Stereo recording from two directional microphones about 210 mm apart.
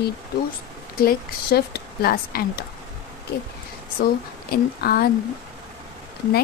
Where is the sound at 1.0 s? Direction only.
45° left (ahead or behind).